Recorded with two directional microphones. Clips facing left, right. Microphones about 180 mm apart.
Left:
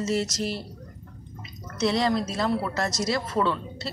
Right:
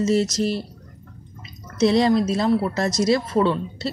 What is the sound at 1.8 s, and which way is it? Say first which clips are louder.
Speech: right 7 dB; 25° right (ahead or behind).